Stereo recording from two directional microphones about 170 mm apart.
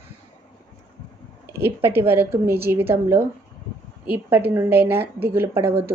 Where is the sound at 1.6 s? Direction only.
15° right (ahead or behind).